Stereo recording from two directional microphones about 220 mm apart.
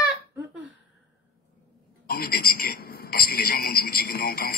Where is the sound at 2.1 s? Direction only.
45° left (ahead or behind).